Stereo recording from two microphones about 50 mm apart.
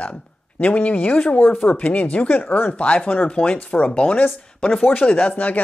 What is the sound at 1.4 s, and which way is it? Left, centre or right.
Speech, left.